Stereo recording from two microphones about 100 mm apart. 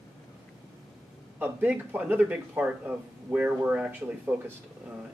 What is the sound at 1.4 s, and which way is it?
Speech, 20° right (ahead or behind).